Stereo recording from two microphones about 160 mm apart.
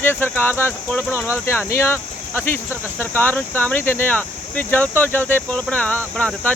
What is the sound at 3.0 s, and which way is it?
Speech, 15° left (ahead or behind).